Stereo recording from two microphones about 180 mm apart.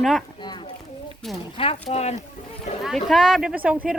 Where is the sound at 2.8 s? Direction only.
Centre (ahead or behind).